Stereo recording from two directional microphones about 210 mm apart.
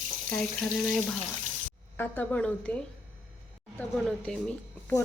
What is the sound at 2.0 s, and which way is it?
A woman's voice, 5° left (ahead or behind).